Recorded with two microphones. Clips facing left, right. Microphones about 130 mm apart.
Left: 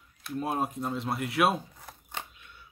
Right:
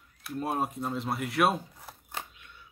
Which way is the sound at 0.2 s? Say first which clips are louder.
Even; centre (ahead or behind).